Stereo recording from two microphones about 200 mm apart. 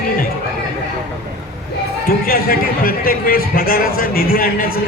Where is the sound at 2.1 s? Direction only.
50° left (ahead or behind).